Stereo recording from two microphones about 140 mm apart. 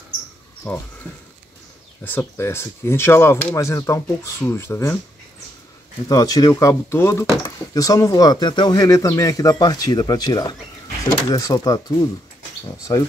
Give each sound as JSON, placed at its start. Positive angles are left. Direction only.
{"t": 0.7, "sound": "speech", "side_deg": 10}
{"t": 2.0, "sound": "speech", "side_deg": 15}
{"t": 6.0, "sound": "speech", "side_deg": 25}